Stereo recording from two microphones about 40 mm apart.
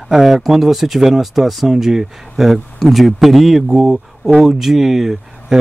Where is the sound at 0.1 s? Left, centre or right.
Centre.